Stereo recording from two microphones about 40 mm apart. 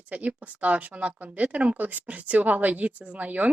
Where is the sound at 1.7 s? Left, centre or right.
Right.